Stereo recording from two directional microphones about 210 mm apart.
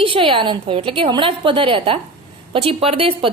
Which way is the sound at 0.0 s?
25° right (ahead or behind).